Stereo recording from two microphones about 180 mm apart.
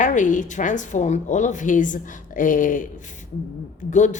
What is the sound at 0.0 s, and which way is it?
Speech, 45° left (ahead or behind).